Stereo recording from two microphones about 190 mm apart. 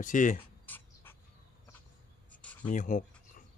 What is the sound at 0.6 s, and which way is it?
Writing, 10° left (ahead or behind).